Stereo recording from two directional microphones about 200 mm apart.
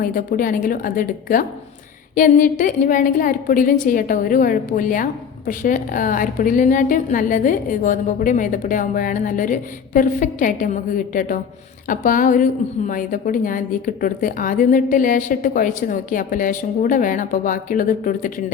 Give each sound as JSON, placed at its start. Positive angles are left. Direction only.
{"t": 0.0, "sound": "a woman's voice", "side_deg": 45}